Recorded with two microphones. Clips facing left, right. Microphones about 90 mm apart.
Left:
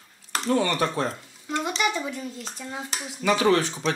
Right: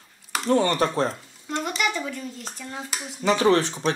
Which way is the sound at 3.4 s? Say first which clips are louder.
Right 2 dB; 30° right (ahead or behind).